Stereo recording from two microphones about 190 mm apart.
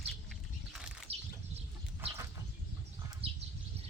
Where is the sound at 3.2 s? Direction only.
30° right (ahead or behind).